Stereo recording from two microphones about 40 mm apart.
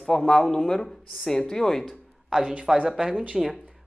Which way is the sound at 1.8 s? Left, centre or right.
Centre.